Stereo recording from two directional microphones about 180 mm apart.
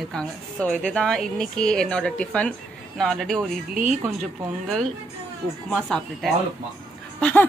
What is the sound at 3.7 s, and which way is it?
Speech, 45° right (ahead or behind).